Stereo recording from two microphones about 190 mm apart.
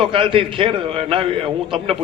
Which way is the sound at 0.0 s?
30° right (ahead or behind).